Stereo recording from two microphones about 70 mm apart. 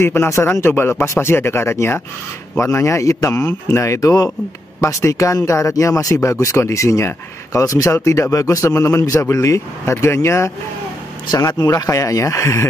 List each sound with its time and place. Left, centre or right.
0.0 s speech: left
11.8 s speech: left